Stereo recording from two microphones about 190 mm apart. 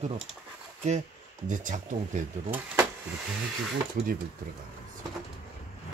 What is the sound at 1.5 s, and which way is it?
Speech, 45° right (ahead or behind).